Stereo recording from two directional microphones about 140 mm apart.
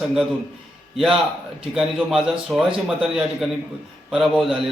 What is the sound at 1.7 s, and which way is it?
A man's voice, 5° right (ahead or behind).